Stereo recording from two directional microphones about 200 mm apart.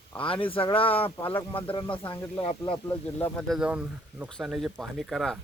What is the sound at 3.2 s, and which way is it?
Speech, 5° left (ahead or behind).